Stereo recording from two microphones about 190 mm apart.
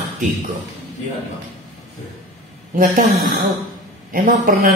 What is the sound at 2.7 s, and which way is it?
Speech, 45° right (ahead or behind).